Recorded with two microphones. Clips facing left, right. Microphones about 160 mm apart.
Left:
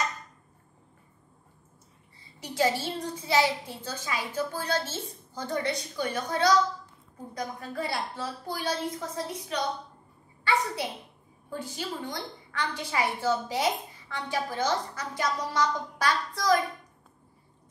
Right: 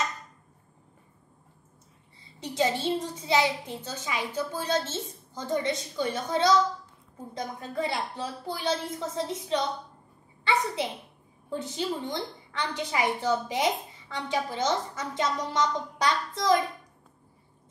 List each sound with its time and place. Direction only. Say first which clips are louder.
2.5 s a woman's voice: right 1 dB; 20° right (ahead or behind)
11.5 s a woman's voice: right 4 dB; 20° right (ahead or behind)